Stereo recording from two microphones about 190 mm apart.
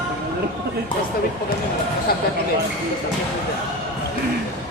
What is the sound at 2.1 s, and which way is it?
Speech, 55° left (ahead or behind).